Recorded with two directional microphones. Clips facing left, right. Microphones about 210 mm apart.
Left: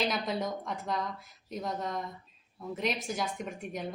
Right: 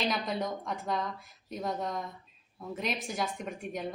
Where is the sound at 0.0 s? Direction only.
Centre (ahead or behind).